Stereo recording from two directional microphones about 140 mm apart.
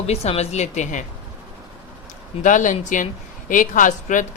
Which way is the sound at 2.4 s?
65° left (ahead or behind).